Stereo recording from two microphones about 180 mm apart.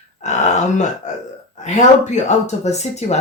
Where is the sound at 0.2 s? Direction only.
40° left (ahead or behind).